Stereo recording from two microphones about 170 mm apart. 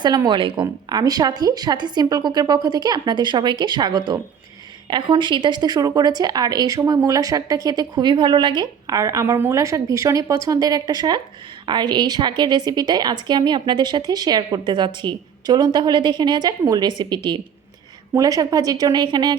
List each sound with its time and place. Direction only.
0.0 s speech: 25° right (ahead or behind)